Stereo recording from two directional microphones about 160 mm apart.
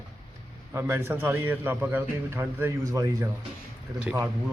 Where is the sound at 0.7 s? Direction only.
15° right (ahead or behind).